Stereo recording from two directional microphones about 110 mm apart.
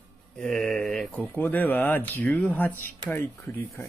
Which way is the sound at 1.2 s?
15° left (ahead or behind).